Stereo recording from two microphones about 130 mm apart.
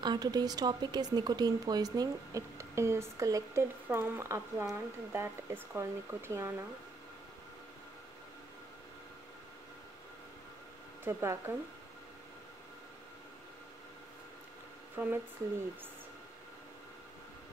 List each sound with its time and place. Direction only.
0.0 s a woman's voice: 30° right (ahead or behind)
11.1 s a woman's voice: 20° right (ahead or behind)
15.0 s speech: 15° right (ahead or behind)